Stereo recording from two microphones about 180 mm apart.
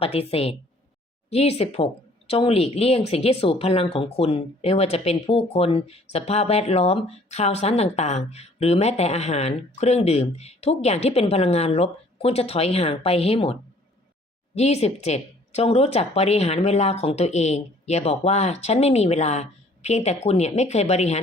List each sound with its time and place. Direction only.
0.0 s speech: 35° left (ahead or behind)